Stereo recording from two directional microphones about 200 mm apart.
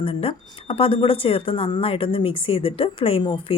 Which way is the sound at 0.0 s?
25° left (ahead or behind).